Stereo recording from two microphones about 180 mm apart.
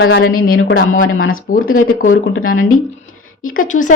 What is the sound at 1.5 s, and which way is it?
Speech, 50° left (ahead or behind).